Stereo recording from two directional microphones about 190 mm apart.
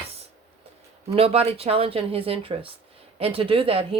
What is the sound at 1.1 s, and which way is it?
Speech, 30° right (ahead or behind).